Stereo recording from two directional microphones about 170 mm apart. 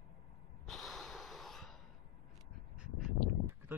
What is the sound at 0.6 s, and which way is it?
Snort, centre (ahead or behind).